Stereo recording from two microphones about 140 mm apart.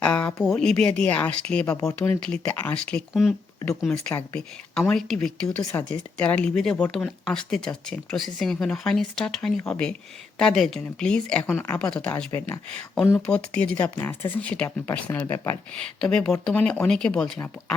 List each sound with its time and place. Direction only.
0.0 s a sound: 10° left (ahead or behind)
0.4 s speech: 5° left (ahead or behind)
3.1 s speech: centre (ahead or behind)